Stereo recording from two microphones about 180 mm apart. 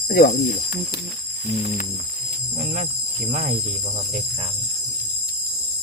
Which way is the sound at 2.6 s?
40° right (ahead or behind).